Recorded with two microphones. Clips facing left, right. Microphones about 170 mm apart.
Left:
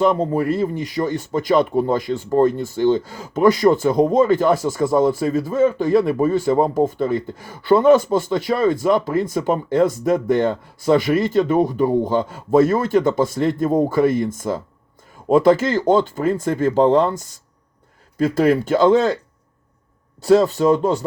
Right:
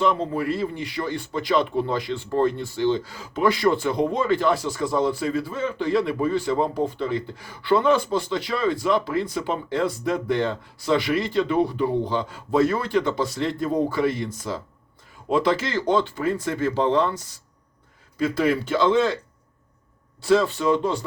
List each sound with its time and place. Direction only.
0.0 s speech: 45° left (ahead or behind)
18.2 s speech: 45° left (ahead or behind)
20.2 s speech: 40° left (ahead or behind)